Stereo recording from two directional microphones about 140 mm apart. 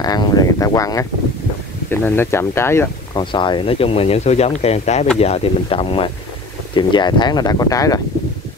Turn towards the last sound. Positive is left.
turn(degrees=25)  # may be behind; listen again after turning